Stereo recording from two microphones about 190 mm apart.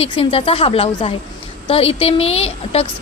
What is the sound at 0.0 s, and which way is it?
A woman's voice, 30° left (ahead or behind).